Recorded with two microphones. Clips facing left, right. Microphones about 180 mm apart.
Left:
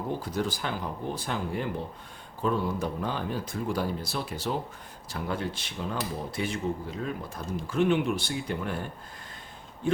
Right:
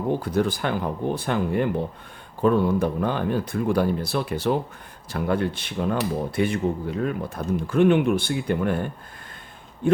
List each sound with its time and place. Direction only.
0.2 s speech: 60° right (ahead or behind)